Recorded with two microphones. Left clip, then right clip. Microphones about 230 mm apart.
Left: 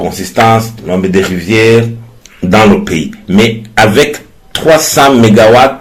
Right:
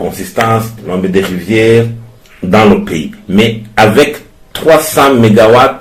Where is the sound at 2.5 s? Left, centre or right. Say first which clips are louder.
Left 1 dB; left.